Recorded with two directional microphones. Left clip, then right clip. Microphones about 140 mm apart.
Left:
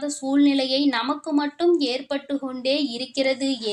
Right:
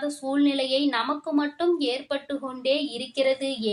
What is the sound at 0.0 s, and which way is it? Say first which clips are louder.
Speech: left 3 dB; 35° left (ahead or behind).